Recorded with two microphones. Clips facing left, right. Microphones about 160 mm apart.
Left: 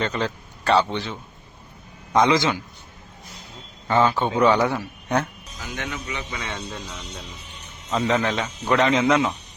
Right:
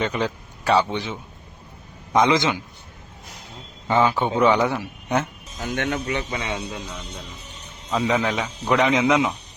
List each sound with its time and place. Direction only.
0.0 s a man's voice: 10° right (ahead or behind)
3.8 s a man's voice: 15° right (ahead or behind)
5.5 s speech: 55° right (ahead or behind)
6.4 s a man's voice: 10° right (ahead or behind)